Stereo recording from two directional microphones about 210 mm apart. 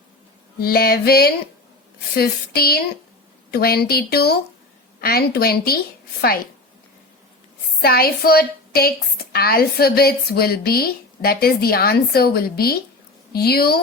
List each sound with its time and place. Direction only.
0.6 s a woman's voice: 45° left (ahead or behind)
7.8 s a woman's voice: 45° left (ahead or behind)